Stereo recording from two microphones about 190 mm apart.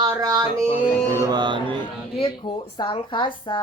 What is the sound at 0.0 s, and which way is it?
Music, 20° right (ahead or behind).